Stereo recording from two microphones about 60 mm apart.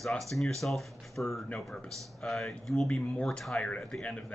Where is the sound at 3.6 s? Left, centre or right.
Centre.